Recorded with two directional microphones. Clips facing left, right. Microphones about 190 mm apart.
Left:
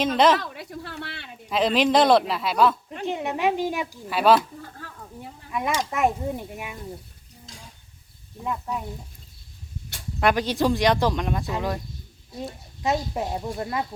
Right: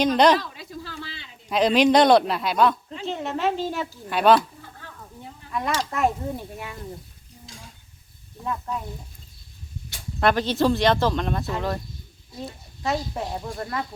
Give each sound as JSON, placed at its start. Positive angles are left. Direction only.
{"t": 0.0, "sound": "speech", "side_deg": 0}
{"t": 0.3, "sound": "a sound", "side_deg": 65}
{"t": 1.5, "sound": "speech", "side_deg": 0}
{"t": 3.1, "sound": "speech", "side_deg": 15}
{"t": 4.0, "sound": "speech", "side_deg": 5}
{"t": 5.5, "sound": "speech", "side_deg": 10}
{"t": 8.4, "sound": "speech", "side_deg": 10}
{"t": 10.2, "sound": "speech", "side_deg": 10}